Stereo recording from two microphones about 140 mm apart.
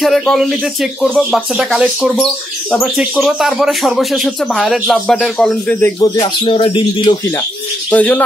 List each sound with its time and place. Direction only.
0.0 s speech: centre (ahead or behind)
5.9 s speech: 30° left (ahead or behind)
7.9 s speech: 10° left (ahead or behind)